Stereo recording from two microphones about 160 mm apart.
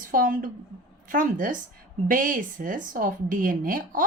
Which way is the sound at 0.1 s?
55° right (ahead or behind).